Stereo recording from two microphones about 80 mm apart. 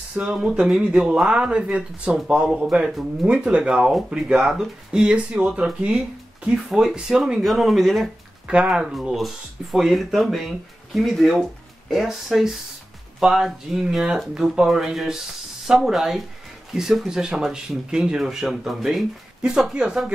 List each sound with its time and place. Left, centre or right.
0.1 s speech: centre
8.5 s speech: centre